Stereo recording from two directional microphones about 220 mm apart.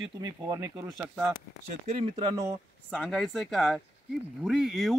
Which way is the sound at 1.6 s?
30° right (ahead or behind).